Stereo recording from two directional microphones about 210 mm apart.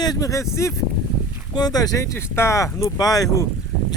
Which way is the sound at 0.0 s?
15° left (ahead or behind).